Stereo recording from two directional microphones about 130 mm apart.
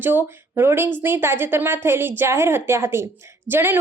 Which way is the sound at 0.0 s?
15° right (ahead or behind).